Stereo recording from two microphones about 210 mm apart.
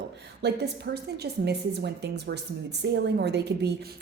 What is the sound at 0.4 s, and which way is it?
A woman's voice, 50° right (ahead or behind).